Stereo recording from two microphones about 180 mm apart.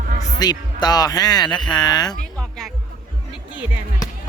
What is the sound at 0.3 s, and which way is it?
Speech, 20° left (ahead or behind).